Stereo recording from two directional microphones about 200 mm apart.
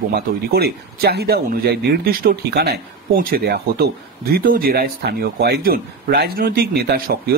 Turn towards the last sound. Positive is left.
turn(degrees=-50)  # may be behind; listen again after turning